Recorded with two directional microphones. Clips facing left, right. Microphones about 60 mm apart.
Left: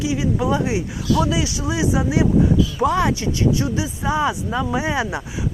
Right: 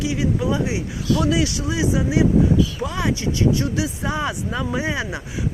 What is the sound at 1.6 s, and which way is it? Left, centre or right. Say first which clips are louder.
Speech: left 1 dB; left.